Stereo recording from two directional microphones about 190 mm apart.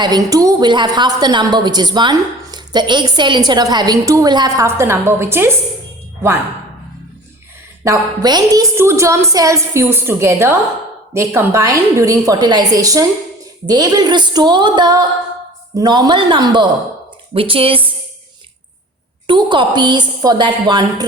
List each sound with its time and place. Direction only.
0.0 s a woman's voice: 20° right (ahead or behind)
7.9 s a woman's voice: 20° right (ahead or behind)
19.3 s a woman's voice: 25° right (ahead or behind)